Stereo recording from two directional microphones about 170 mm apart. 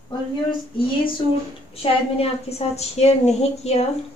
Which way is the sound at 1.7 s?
35° left (ahead or behind).